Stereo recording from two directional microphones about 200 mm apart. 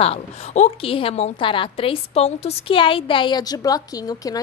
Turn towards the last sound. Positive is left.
turn(degrees=20)  # may be behind; listen again after turning